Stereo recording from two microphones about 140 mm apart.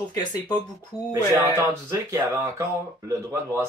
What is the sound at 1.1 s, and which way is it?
Speech, 20° right (ahead or behind).